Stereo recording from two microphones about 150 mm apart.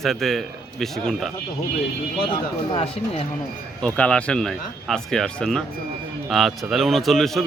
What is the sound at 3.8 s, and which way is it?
A man's voice, 5° left (ahead or behind).